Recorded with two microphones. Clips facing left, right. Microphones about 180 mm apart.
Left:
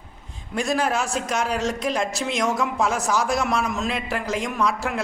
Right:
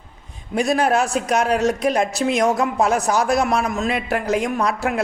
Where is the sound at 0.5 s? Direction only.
65° right (ahead or behind).